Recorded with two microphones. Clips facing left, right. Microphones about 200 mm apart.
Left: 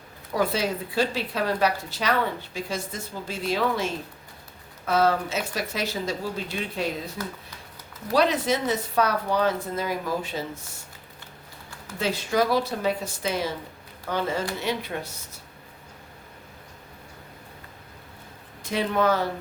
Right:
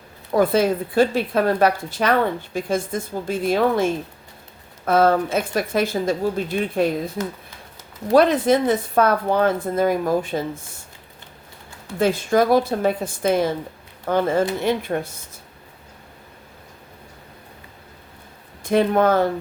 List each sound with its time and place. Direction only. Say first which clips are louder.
0.3 s speech: right 8 dB; 50° right (ahead or behind)
4.9 s speech: right 6 dB; 55° right (ahead or behind)
8.1 s speech: right 7 dB; 50° right (ahead or behind)
11.9 s speech: right 6 dB; 50° right (ahead or behind)
18.6 s speech: right 7 dB; 55° right (ahead or behind)